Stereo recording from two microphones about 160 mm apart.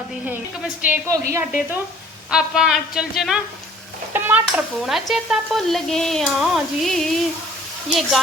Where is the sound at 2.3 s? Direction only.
5° right (ahead or behind).